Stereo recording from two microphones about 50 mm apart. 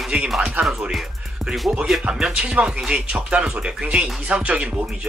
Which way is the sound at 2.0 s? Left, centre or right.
Centre.